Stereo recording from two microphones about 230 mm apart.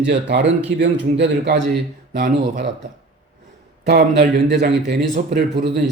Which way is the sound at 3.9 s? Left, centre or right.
Right.